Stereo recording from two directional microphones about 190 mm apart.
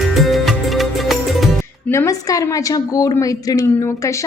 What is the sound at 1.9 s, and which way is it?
A woman's voice, 15° left (ahead or behind).